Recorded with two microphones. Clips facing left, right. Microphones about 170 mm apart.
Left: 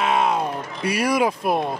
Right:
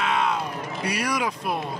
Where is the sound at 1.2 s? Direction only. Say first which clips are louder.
Left 6 dB; 40° left (ahead or behind).